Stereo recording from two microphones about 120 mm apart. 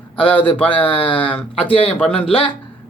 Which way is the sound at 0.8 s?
45° left (ahead or behind).